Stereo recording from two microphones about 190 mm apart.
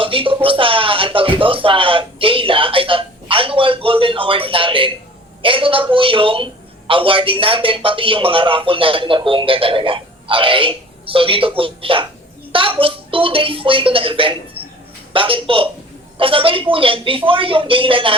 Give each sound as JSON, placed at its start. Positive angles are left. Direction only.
{"t": 0.0, "sound": "music", "side_deg": -30}
{"t": 5.4, "sound": "a woman's voice", "side_deg": -30}